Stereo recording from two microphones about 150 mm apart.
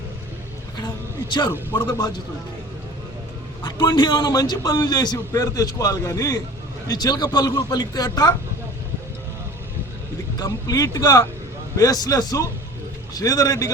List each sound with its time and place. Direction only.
1.7 s a man's voice: 30° left (ahead or behind)
3.6 s a man's voice: 30° left (ahead or behind)
10.3 s a man's voice: 25° left (ahead or behind)